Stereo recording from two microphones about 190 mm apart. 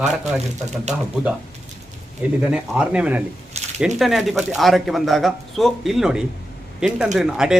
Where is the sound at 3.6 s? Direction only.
35° right (ahead or behind).